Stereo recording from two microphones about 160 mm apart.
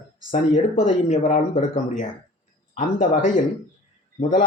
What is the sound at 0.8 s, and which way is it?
Speech, 50° left (ahead or behind).